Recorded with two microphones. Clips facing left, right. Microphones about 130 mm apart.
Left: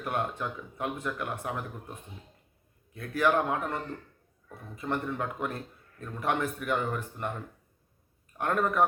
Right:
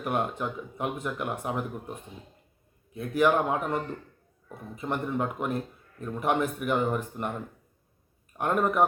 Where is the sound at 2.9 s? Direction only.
15° right (ahead or behind).